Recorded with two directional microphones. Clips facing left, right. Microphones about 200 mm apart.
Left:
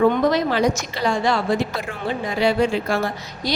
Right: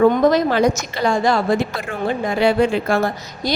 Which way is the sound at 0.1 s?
45° right (ahead or behind).